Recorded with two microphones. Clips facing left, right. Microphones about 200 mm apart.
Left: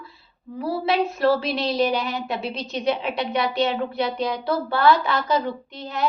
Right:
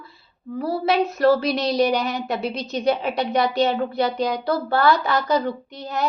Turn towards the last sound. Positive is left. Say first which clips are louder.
# even
turn(degrees=-40)  # may be behind; listen again after turning